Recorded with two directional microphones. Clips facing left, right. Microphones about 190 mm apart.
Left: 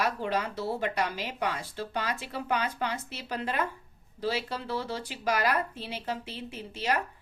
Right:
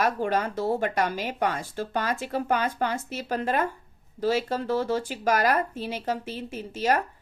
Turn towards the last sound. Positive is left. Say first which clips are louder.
# right 5 dB
turn(degrees=-45)  # may be behind; listen again after turning